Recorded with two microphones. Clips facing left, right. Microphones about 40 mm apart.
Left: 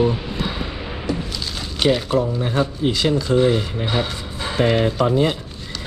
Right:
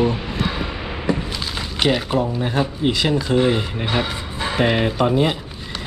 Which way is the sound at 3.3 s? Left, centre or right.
Right.